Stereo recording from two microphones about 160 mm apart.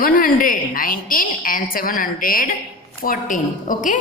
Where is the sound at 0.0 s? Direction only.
60° left (ahead or behind).